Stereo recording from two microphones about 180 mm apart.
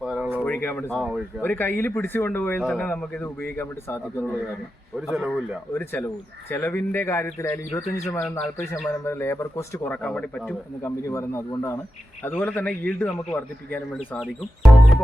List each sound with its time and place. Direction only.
0.0 s a sound: 5° right (ahead or behind)
0.3 s speech: 10° left (ahead or behind)
0.9 s speech: centre (ahead or behind)
1.4 s speech: 10° left (ahead or behind)
4.9 s speech: 5° right (ahead or behind)
5.7 s speech: 10° left (ahead or behind)